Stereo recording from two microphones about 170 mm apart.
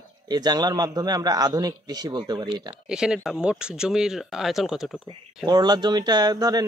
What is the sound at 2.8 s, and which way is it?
Speech, 5° right (ahead or behind).